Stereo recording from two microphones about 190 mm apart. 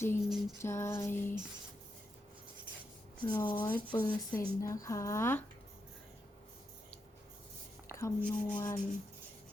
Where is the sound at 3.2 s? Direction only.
10° left (ahead or behind).